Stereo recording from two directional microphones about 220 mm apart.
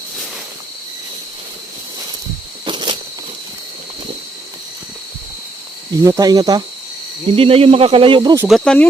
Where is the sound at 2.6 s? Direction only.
20° right (ahead or behind).